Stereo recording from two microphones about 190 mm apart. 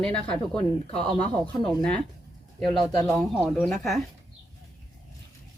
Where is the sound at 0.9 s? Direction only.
30° left (ahead or behind).